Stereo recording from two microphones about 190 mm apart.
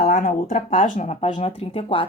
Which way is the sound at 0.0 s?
40° left (ahead or behind).